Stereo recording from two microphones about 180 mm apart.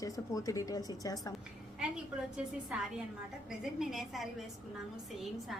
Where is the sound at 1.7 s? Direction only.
5° right (ahead or behind).